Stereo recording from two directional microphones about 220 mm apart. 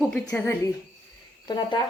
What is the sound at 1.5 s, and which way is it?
Speech, 20° left (ahead or behind).